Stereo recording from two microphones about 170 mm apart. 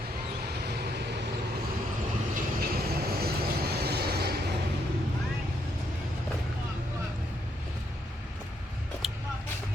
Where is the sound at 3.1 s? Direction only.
65° right (ahead or behind).